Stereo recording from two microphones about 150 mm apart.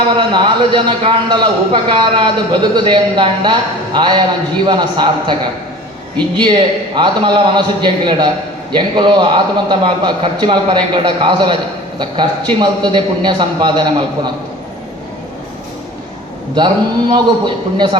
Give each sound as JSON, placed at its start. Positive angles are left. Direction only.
{"t": 0.2, "sound": "a man's voice", "side_deg": -30}
{"t": 16.6, "sound": "a man's voice", "side_deg": -30}